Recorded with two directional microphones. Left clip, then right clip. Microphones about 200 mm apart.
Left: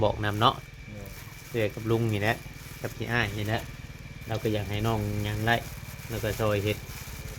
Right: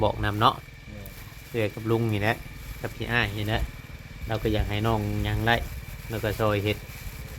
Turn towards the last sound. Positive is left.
turn(degrees=-20)  # may be behind; listen again after turning